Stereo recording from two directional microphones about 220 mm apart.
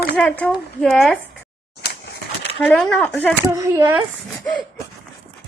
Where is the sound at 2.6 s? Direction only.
5° left (ahead or behind).